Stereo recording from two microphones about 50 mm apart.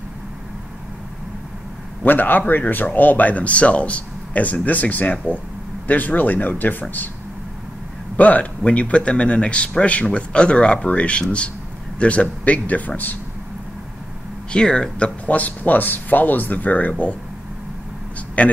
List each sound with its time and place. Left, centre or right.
2.0 s speech: left
8.2 s speech: left
14.5 s speech: centre
18.4 s speech: left